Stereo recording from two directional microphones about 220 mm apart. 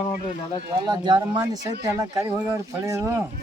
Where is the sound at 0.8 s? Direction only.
20° right (ahead or behind).